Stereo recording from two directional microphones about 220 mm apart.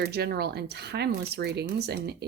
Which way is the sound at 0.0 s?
45° right (ahead or behind).